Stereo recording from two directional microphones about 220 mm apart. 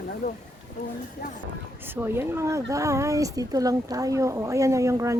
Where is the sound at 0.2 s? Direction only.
45° left (ahead or behind).